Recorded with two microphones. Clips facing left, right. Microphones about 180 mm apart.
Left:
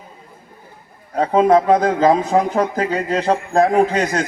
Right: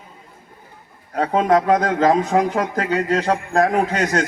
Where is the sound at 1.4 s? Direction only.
30° left (ahead or behind).